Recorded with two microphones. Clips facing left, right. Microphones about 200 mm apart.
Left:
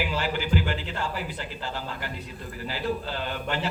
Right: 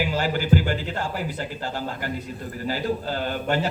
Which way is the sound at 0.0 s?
45° right (ahead or behind).